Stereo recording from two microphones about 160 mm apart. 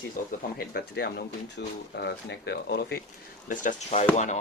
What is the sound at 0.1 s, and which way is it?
Speech, 65° left (ahead or behind).